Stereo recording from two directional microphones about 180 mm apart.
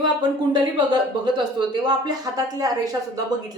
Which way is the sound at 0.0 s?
25° right (ahead or behind).